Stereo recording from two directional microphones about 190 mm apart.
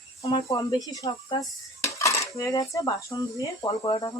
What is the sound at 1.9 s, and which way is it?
Cutlery, 15° left (ahead or behind).